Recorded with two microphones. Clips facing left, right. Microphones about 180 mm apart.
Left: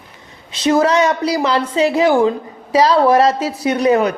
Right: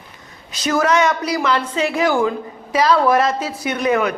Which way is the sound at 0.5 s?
30° left (ahead or behind).